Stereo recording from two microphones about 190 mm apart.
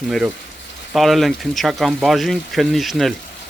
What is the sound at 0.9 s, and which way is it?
Speech, centre (ahead or behind).